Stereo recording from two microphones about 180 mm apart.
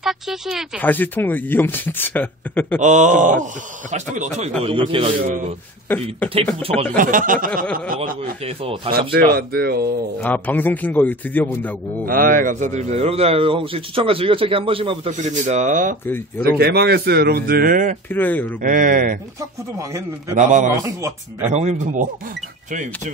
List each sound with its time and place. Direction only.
0.0 s speech: centre (ahead or behind)
0.7 s speech: 10° left (ahead or behind)
2.8 s a man's voice: 40° right (ahead or behind)
4.6 s a man's voice: 30° right (ahead or behind)
5.2 s speech: 45° right (ahead or behind)
5.9 s speech: 10° left (ahead or behind)
7.0 s speech: 50° right (ahead or behind)
10.2 s speech: 10° left (ahead or behind)
12.1 s a man's voice: 50° right (ahead or behind)
16.5 s speech: 60° right (ahead or behind)
18.1 s speech: 10° left (ahead or behind)
18.6 s speech: 45° right (ahead or behind)
20.3 s a man's voice: 45° right (ahead or behind)